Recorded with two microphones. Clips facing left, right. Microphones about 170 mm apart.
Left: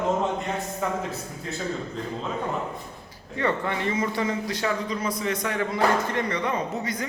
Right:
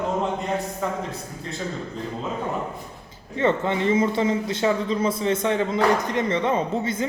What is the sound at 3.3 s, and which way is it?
A man's voice, 25° right (ahead or behind).